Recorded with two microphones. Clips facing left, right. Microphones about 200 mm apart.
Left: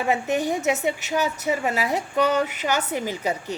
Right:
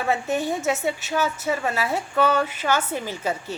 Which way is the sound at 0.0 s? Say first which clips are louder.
Left 1 dB; 15° left (ahead or behind).